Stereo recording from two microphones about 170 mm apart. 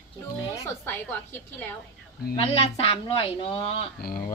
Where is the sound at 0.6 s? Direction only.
15° left (ahead or behind).